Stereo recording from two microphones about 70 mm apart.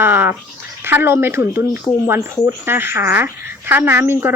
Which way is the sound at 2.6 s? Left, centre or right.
Right.